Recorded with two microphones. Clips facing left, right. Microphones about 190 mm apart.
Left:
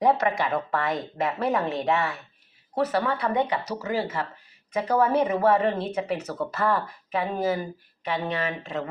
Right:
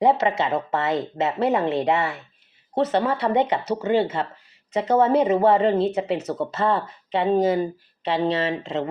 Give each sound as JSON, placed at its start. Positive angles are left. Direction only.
{"t": 0.0, "sound": "speech", "side_deg": -25}